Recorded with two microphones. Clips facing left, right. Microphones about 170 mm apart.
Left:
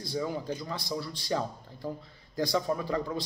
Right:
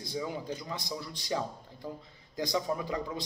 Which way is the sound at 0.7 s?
15° right (ahead or behind).